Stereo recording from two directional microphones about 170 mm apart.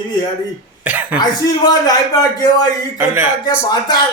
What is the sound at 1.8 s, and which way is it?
Speech, 20° left (ahead or behind).